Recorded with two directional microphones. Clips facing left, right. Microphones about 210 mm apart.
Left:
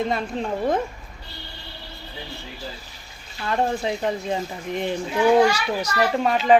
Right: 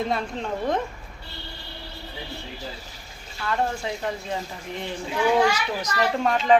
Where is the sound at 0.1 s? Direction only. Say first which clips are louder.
Left 2 dB; 5° left (ahead or behind).